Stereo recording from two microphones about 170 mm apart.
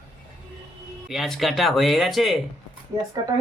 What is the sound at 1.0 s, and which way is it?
Speech, centre (ahead or behind).